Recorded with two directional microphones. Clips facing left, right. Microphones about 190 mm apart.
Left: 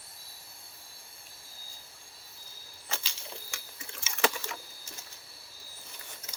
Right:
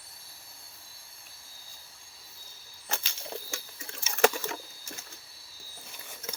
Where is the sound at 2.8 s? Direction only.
50° right (ahead or behind).